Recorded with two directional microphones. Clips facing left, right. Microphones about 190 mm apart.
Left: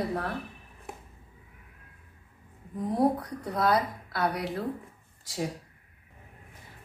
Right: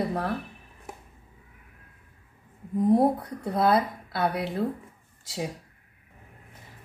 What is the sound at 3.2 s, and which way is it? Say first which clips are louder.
Speech: right 3 dB; 25° right (ahead or behind).